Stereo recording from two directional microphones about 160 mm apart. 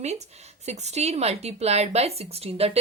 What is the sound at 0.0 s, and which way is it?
Speech, 45° right (ahead or behind).